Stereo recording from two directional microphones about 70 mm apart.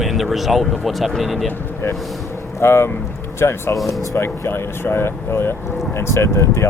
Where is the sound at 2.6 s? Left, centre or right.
Left.